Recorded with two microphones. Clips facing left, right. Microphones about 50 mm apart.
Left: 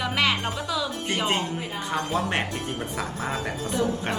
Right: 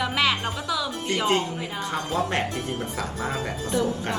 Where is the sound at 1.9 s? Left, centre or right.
Left.